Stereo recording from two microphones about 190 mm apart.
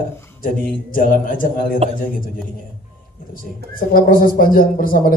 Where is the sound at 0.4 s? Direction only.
50° left (ahead or behind).